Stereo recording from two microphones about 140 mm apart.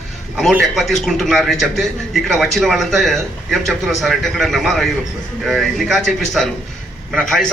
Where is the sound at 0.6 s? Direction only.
Centre (ahead or behind).